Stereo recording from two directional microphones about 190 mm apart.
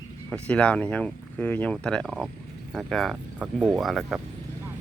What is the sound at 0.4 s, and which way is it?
Speech, 5° left (ahead or behind).